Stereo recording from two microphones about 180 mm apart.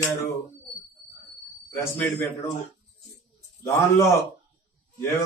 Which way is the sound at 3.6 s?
15° left (ahead or behind).